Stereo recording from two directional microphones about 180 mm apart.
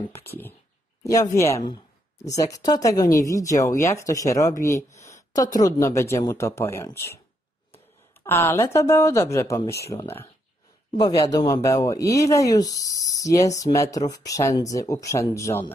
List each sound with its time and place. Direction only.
1.0 s speech: 20° left (ahead or behind)
8.2 s speech: 10° left (ahead or behind)